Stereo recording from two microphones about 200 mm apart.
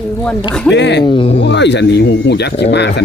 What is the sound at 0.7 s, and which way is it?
Speech, 60° left (ahead or behind).